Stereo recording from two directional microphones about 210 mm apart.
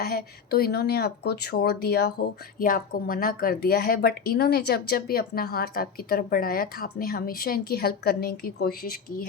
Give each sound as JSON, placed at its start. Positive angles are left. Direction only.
{"t": 0.0, "sound": "speech", "side_deg": 45}